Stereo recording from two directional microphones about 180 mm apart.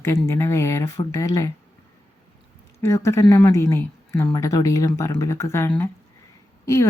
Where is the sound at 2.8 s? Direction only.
15° left (ahead or behind).